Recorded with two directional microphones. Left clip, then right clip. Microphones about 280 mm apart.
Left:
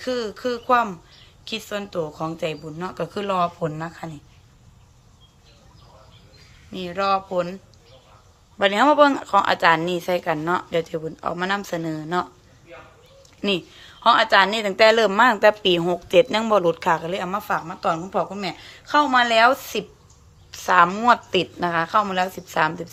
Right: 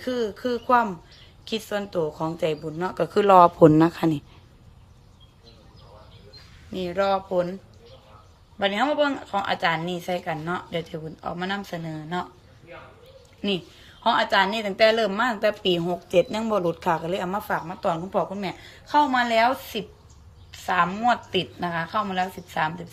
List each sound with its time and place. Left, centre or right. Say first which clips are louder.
0.0 s a woman's voice: left 1 dB; centre
3.6 s speech: right 12 dB; right
6.7 s a woman's voice: left 1 dB; centre
8.5 s a woman's voice: left 7 dB; centre
14.0 s a woman's voice: left 5 dB; centre